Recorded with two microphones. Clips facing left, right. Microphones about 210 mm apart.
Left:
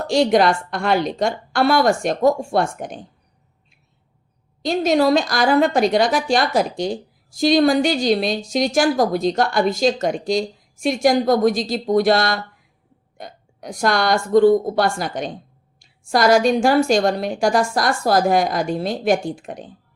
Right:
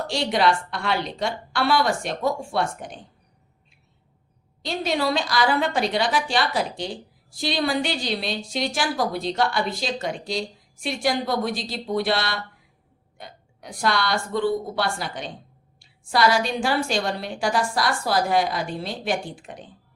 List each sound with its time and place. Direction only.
0.1 s a woman's voice: 45° left (ahead or behind)
4.6 s a woman's voice: 45° left (ahead or behind)